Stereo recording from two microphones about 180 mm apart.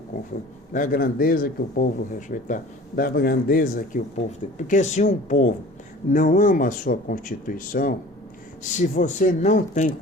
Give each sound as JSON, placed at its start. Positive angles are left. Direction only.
{"t": 0.7, "sound": "speech", "side_deg": 50}